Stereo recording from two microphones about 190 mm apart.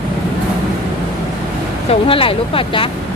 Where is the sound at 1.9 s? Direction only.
30° left (ahead or behind).